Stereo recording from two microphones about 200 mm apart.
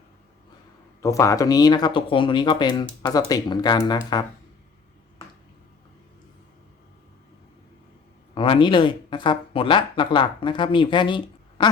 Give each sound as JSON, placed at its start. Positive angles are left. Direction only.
{"t": 1.0, "sound": "speech", "side_deg": 15}
{"t": 8.4, "sound": "speech", "side_deg": 25}